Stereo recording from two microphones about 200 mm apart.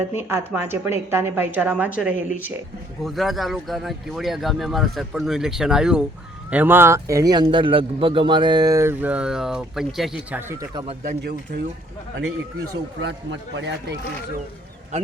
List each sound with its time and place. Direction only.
0.2 s speech: 10° right (ahead or behind)
10.5 s speech: 15° right (ahead or behind)
11.2 s speech: 55° right (ahead or behind)
12.2 s speech: 75° right (ahead or behind); by 14.0 s 60° right (ahead or behind)
14.9 s speech: 35° right (ahead or behind)